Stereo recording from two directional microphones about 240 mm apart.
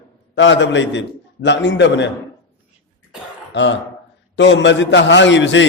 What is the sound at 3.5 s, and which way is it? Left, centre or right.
A man's voice, left.